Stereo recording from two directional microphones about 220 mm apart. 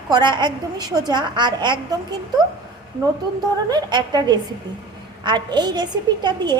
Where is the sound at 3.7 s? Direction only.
20° right (ahead or behind).